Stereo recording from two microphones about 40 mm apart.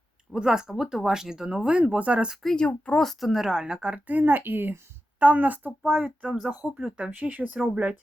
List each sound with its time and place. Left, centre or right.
0.3 s speech: centre
1.8 s speech: right
2.6 s speech: left
3.0 s speech: centre
3.2 s a woman's voice: centre; by 4.0 s right
4.0 s a woman's voice: right
5.2 s a woman's voice: right
5.9 s speech: right
6.5 s speech: right
7.1 s a woman's voice: right